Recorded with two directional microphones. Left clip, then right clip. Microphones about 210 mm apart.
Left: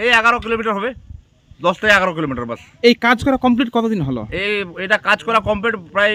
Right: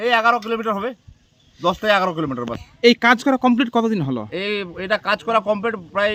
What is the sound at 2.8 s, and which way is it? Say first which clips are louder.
Speech: left 1 dB; centre (ahead or behind).